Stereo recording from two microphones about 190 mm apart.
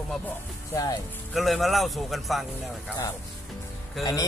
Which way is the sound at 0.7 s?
20° left (ahead or behind).